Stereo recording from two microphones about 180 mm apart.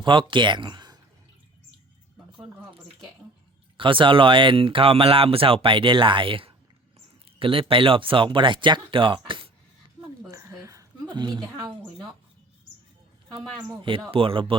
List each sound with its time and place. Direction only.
0.0 s speech: 30° right (ahead or behind)
3.8 s speech: 30° right (ahead or behind)
10.3 s a sound: 15° right (ahead or behind)
11.1 s speech: 25° right (ahead or behind)
13.7 s speech: 30° right (ahead or behind)